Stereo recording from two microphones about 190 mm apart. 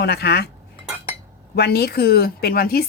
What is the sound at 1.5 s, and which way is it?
Speech, 60° left (ahead or behind).